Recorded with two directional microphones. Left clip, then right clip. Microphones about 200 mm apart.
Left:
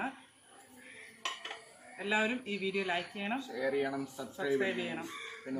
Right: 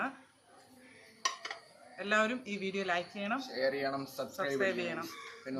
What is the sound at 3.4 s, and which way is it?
A man's voice, 25° right (ahead or behind).